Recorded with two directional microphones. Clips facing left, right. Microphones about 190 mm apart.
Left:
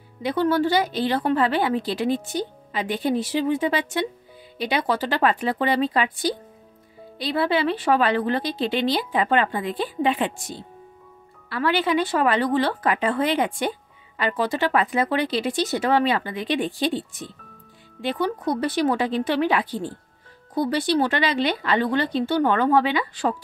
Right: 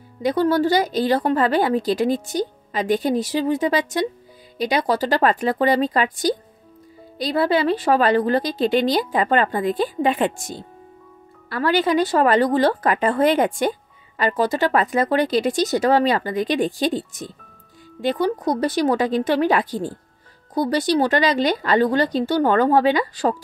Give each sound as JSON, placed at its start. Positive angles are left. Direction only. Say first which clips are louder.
{"t": 0.2, "sound": "a woman's voice", "louder": "right 3 dB", "side_deg": -40}